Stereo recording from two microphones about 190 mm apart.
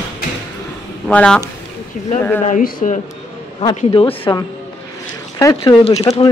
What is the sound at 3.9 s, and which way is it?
A woman's voice, 25° left (ahead or behind).